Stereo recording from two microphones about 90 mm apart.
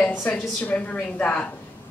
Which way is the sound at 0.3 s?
15° left (ahead or behind).